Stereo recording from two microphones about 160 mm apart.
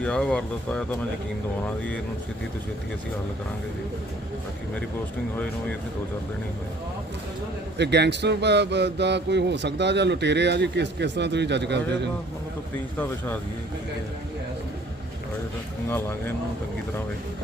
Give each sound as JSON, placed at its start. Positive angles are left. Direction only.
{"t": 0.0, "sound": "speech", "side_deg": 10}
{"t": 7.8, "sound": "speech", "side_deg": -90}
{"t": 15.9, "sound": "speech", "side_deg": 15}